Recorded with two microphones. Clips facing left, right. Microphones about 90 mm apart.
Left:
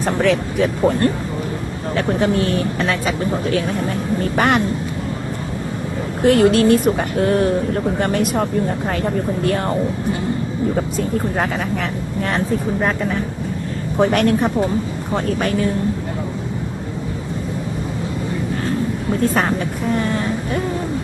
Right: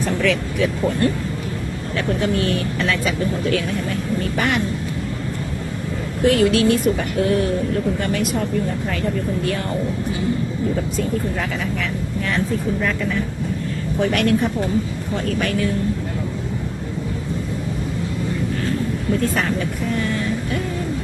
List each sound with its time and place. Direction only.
0.0 s speech: 40° left (ahead or behind)
6.2 s speech: 50° left (ahead or behind)
12.8 s speech: 40° left (ahead or behind)
19.2 s speech: 40° left (ahead or behind)